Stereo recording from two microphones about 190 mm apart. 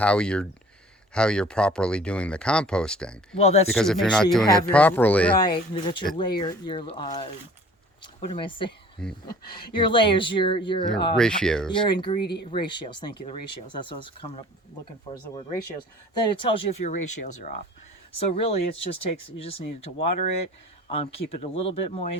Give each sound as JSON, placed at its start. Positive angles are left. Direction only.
{"t": 0.0, "sound": "speech", "side_deg": 5}
{"t": 5.4, "sound": "speech", "side_deg": 25}
{"t": 11.2, "sound": "speech", "side_deg": 5}
{"t": 11.9, "sound": "speech", "side_deg": 25}
{"t": 16.3, "sound": "speech", "side_deg": 25}
{"t": 16.9, "sound": "speech", "side_deg": 40}